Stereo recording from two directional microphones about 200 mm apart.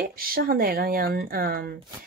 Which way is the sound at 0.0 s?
45° right (ahead or behind).